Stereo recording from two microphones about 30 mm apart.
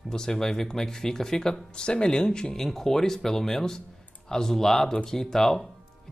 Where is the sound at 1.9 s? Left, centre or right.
Left.